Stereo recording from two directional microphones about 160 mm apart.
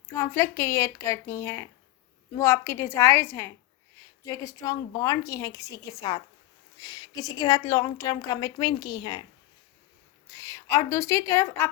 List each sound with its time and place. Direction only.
0.1 s a woman's voice: 15° left (ahead or behind)
10.3 s speech: 20° left (ahead or behind)